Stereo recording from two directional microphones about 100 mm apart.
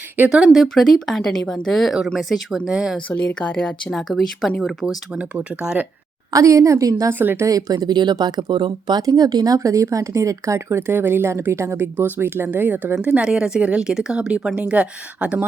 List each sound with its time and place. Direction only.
0.3 s speech: 5° right (ahead or behind)
3.1 s speech: 15° left (ahead or behind)
3.9 s speech: centre (ahead or behind)
5.1 s speech: 10° right (ahead or behind)
6.3 s a woman's voice: 35° right (ahead or behind)
7.1 s speech: 20° right (ahead or behind)
7.4 s speech: 35° right (ahead or behind)
9.0 s speech: 40° right (ahead or behind); by 15.4 s 10° right (ahead or behind)